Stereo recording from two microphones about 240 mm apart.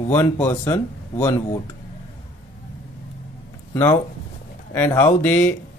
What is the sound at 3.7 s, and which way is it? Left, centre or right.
Speech, centre.